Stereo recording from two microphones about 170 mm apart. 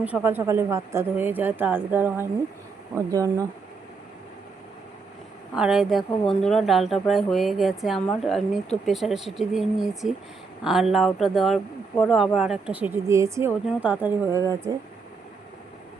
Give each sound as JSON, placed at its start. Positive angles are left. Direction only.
{"t": 0.0, "sound": "speech", "side_deg": -10}
{"t": 5.5, "sound": "speech", "side_deg": -5}